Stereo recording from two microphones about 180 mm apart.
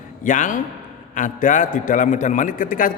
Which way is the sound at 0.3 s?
45° left (ahead or behind).